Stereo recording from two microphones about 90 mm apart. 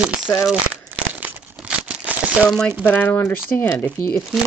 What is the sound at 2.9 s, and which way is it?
Speech, 20° left (ahead or behind).